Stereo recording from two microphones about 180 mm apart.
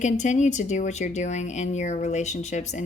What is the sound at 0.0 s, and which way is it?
Speech, 40° left (ahead or behind).